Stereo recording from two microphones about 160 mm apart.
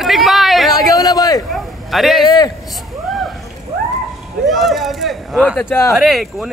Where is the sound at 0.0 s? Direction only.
Centre (ahead or behind).